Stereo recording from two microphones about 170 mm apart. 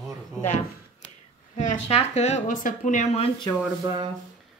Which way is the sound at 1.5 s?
40° left (ahead or behind).